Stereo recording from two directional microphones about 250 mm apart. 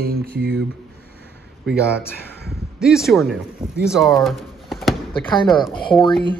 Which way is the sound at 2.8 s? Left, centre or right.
Centre.